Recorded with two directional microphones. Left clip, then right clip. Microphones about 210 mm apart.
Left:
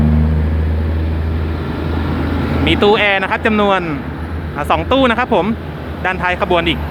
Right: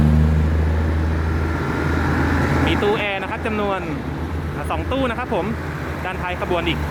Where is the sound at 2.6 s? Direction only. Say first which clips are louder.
Left 11 dB; 15° left (ahead or behind).